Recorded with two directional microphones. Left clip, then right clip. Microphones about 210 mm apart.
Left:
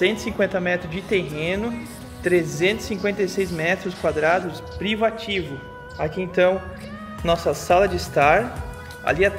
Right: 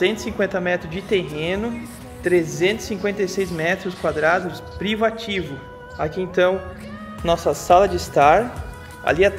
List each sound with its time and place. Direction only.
0.0 s speech: centre (ahead or behind); by 9.3 s 20° right (ahead or behind)